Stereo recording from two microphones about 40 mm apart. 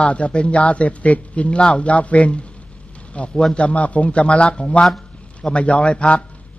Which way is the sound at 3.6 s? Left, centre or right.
Left.